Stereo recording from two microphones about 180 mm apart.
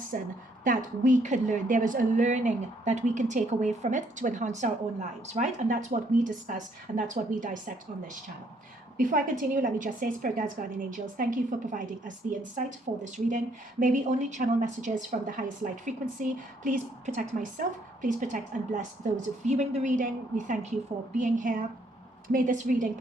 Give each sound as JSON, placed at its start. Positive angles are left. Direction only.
{"t": 0.1, "sound": "a woman's voice", "side_deg": -55}
{"t": 9.0, "sound": "a woman's voice", "side_deg": -50}